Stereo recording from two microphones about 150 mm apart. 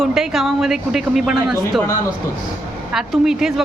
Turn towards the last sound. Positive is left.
turn(degrees=-5)  # may be behind; listen again after turning